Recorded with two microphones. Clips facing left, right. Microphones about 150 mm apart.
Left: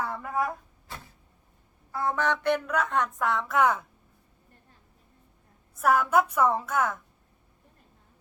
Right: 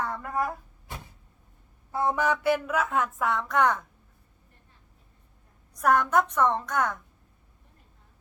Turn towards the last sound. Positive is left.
turn(degrees=5)  # may be behind; listen again after turning